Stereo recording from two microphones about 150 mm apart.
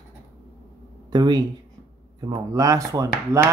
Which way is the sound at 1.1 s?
25° right (ahead or behind).